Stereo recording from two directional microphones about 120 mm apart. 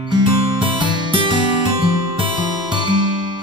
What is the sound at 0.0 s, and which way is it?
Music, 40° right (ahead or behind).